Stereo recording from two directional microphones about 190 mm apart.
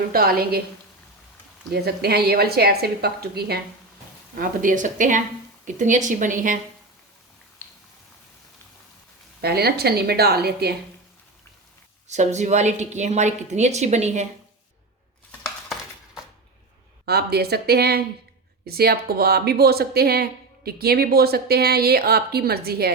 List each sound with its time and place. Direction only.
0.1 s speech: 55° right (ahead or behind)
1.7 s speech: 55° right (ahead or behind)
4.4 s a woman's voice: 45° right (ahead or behind)
7.6 s a sound: 10° left (ahead or behind)
9.4 s speech: 55° right (ahead or behind)
12.0 s a woman's voice: 35° right (ahead or behind)
17.1 s speech: 55° right (ahead or behind)